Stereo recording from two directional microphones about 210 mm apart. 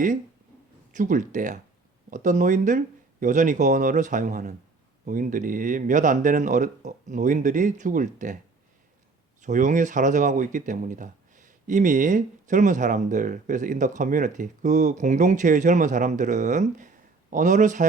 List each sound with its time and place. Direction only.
0.9 s speech: 35° right (ahead or behind)
9.4 s speech: 35° right (ahead or behind)